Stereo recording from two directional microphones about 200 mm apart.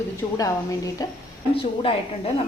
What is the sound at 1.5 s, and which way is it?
Speech, 25° left (ahead or behind).